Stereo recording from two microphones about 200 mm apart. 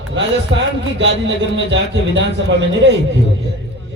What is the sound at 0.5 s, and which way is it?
A man's voice, 65° right (ahead or behind).